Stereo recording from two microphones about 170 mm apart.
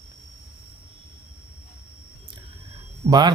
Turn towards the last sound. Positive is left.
turn(degrees=-25)  # may be behind; listen again after turning